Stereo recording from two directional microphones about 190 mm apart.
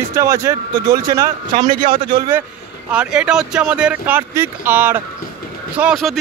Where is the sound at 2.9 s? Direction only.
5° right (ahead or behind).